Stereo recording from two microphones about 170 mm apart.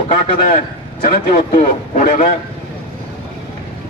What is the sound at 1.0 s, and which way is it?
A man's voice, 55° left (ahead or behind).